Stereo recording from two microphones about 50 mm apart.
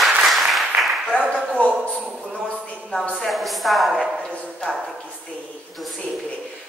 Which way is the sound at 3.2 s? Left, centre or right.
Centre.